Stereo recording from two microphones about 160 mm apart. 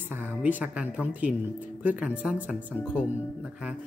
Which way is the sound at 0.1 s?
10° right (ahead or behind).